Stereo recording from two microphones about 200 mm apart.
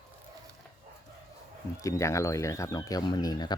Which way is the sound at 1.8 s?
15° left (ahead or behind).